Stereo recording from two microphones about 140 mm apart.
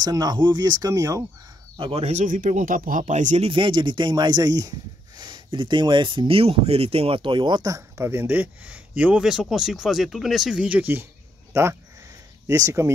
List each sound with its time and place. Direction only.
0.0 s speech: 25° right (ahead or behind)
1.8 s speech: 45° right (ahead or behind); by 3.4 s 60° right (ahead or behind)
3.4 s speech: 35° right (ahead or behind)